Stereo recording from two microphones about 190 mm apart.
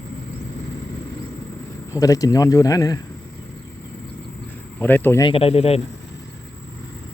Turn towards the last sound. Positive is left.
turn(degrees=30)  # may be behind; listen again after turning